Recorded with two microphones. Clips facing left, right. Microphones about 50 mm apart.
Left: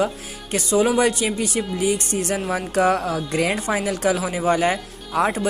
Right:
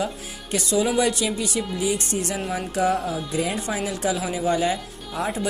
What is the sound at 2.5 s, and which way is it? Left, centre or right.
Speech, left.